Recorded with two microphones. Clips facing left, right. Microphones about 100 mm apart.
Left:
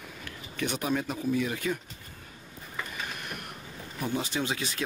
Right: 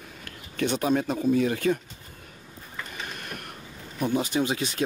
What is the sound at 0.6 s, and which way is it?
Speech, 30° right (ahead or behind).